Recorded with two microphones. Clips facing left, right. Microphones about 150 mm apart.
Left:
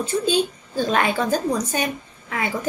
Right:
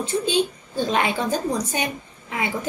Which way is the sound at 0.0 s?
20° right (ahead or behind).